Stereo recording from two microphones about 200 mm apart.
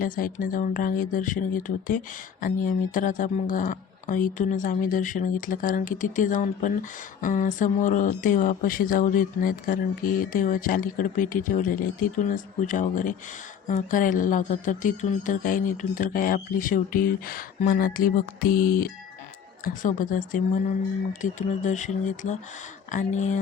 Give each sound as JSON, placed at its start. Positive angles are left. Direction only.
{"t": 0.0, "sound": "speech", "side_deg": 45}